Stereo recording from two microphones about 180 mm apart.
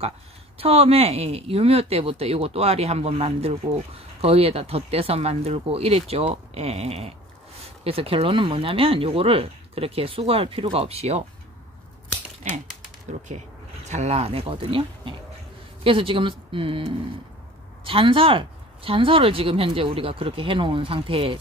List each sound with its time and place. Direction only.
0.6 s speech: 35° right (ahead or behind)
13.8 s speech: 40° right (ahead or behind)